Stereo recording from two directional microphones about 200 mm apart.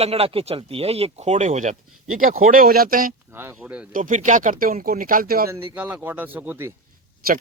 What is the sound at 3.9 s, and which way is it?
Speech, 40° right (ahead or behind).